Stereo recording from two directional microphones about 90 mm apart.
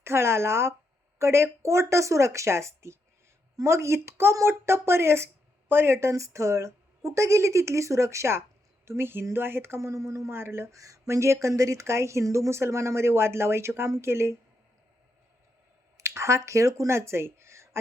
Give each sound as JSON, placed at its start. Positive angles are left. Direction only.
{"t": 0.0, "sound": "speech", "side_deg": -30}
{"t": 16.0, "sound": "speech", "side_deg": -35}